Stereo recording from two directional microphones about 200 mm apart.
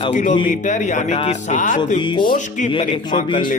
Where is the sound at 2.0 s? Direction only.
25° left (ahead or behind).